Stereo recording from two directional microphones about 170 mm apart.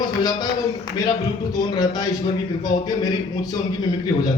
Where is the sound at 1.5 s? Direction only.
25° left (ahead or behind).